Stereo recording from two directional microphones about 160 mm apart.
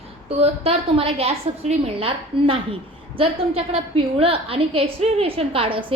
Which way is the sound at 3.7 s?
35° right (ahead or behind).